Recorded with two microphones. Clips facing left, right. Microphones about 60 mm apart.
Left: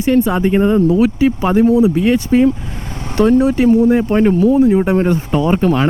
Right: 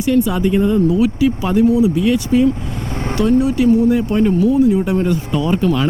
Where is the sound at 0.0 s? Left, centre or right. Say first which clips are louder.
Left 2 dB; left.